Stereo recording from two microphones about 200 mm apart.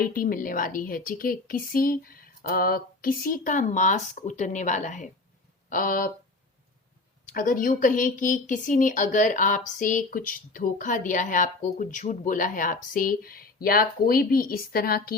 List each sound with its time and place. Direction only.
0.0 s a woman's voice: 45° left (ahead or behind)
7.3 s a woman's voice: 45° left (ahead or behind)